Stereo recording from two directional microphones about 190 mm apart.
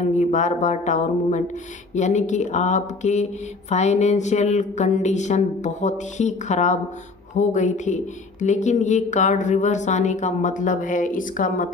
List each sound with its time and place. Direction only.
0.0 s speech: 35° left (ahead or behind)